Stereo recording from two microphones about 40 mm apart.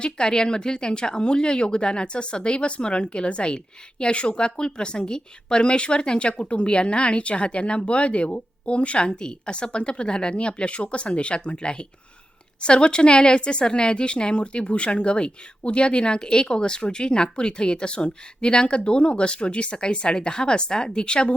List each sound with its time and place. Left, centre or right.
0.0 s speech: centre